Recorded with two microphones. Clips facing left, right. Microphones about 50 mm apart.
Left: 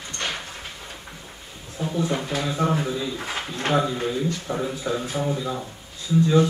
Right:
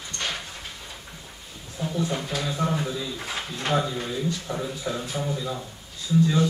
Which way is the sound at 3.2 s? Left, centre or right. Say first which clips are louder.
Left 2 dB; left.